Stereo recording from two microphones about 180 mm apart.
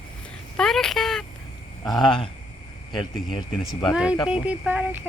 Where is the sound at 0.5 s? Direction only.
5° left (ahead or behind).